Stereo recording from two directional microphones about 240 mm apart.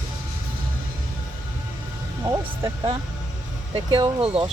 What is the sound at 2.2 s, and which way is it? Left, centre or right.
Speech, centre.